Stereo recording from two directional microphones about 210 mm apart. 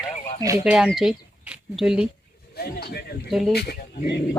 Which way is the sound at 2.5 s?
50° left (ahead or behind).